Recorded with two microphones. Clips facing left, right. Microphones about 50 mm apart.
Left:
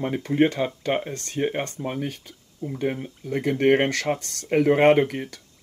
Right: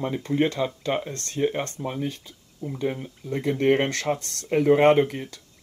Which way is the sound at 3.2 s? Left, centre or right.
Left.